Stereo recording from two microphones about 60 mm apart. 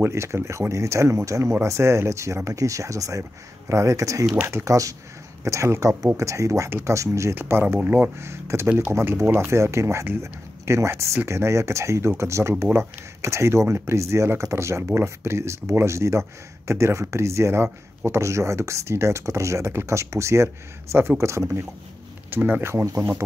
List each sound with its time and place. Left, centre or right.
0.0 s speech: right
5.4 s speech: right
7.3 s speech: right
8.2 s speech: right
22.3 s speech: right
22.7 s speech: right